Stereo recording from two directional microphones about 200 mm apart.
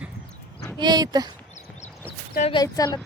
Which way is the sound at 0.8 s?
20° right (ahead or behind).